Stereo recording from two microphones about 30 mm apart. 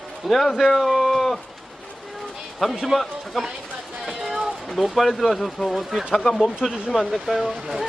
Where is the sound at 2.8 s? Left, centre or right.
Centre.